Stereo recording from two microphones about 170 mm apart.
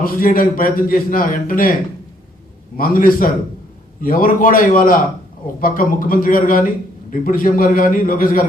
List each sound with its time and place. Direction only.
0.0 s a man's voice: 55° left (ahead or behind)
2.7 s a man's voice: 55° left (ahead or behind)